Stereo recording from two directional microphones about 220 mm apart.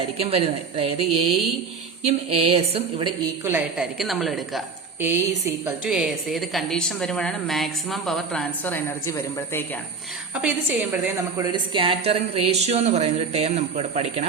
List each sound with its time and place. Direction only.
0.2 s a woman's voice: 25° right (ahead or behind)
3.4 s a woman's voice: 5° right (ahead or behind); by 9.6 s 10° left (ahead or behind)
10.3 s a woman's voice: 5° right (ahead or behind)
11.5 s a woman's voice: 20° right (ahead or behind)